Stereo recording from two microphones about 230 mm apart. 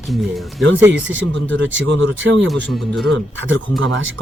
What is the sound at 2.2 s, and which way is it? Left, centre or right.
Speech, right.